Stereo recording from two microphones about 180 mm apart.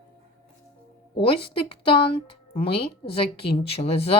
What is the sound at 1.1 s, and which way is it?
A woman's voice, 30° left (ahead or behind).